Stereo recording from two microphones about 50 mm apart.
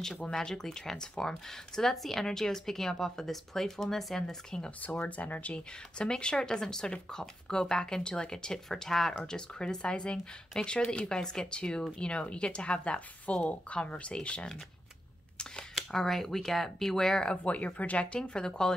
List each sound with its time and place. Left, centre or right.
0.2 s speech: centre
4.6 s speech: left
15.9 s speech: centre
17.4 s speech: left